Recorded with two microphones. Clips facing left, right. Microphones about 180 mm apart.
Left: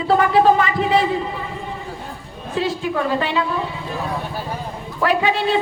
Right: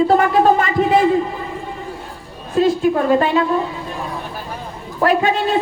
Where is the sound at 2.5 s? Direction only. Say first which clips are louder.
Right 7 dB; 45° right (ahead or behind).